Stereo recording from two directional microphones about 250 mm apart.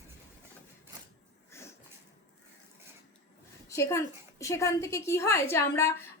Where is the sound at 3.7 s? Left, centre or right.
Centre.